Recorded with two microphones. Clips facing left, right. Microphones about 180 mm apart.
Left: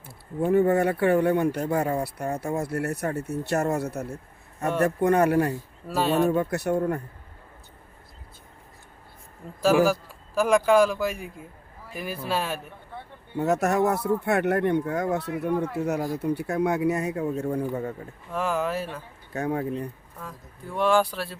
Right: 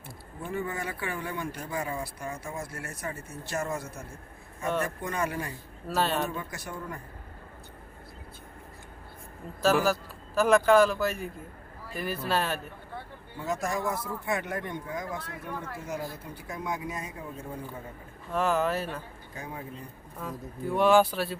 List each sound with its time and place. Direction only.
0.4 s speech: 65° left (ahead or behind)
5.9 s speech: 10° left (ahead or behind)
6.2 s speech: 60° left (ahead or behind)
9.6 s speech: 10° left (ahead or behind)
13.3 s speech: 70° left (ahead or behind)
18.3 s speech: 10° left (ahead or behind)
19.3 s speech: 70° left (ahead or behind)
20.2 s speech: centre (ahead or behind)